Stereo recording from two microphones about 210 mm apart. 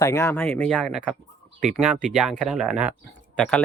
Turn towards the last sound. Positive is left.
turn(degrees=5)  # may be behind; listen again after turning